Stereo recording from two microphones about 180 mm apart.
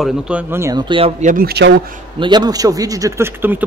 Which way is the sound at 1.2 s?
45° right (ahead or behind).